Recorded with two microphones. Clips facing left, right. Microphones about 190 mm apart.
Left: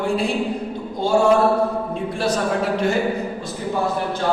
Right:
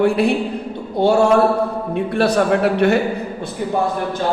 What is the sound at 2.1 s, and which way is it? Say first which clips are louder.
Speech: right 6 dB; 65° right (ahead or behind).